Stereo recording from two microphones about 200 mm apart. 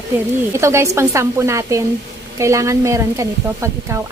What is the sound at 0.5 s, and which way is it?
Speech, 15° right (ahead or behind).